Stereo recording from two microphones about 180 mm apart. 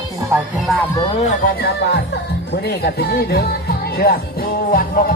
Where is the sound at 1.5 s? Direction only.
65° left (ahead or behind).